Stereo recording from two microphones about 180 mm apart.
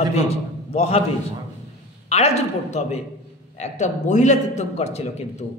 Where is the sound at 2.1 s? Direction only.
35° left (ahead or behind).